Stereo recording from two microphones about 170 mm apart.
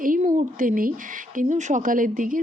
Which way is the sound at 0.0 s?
50° right (ahead or behind).